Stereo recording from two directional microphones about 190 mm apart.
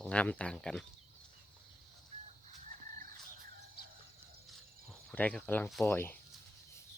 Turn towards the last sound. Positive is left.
turn(degrees=10)  # may be behind; listen again after turning